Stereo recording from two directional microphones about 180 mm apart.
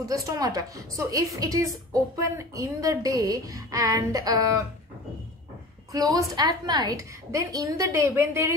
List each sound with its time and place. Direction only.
0.1 s a woman's voice: 20° right (ahead or behind)
5.9 s a woman's voice: 20° right (ahead or behind)